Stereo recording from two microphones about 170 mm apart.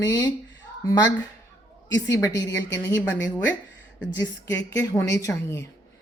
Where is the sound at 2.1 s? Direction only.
20° left (ahead or behind).